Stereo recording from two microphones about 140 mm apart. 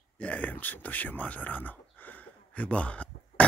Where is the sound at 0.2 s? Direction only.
10° left (ahead or behind).